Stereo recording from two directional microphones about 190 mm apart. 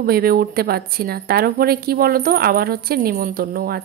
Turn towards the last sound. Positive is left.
turn(degrees=-50)  # may be behind; listen again after turning